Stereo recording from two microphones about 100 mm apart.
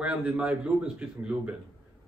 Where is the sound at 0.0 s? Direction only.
15° right (ahead or behind).